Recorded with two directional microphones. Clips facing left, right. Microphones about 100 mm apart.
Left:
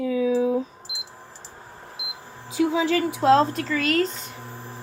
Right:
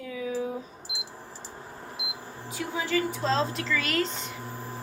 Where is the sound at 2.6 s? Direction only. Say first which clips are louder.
Left 8 dB; 90° left; by 4.1 s 40° left (ahead or behind).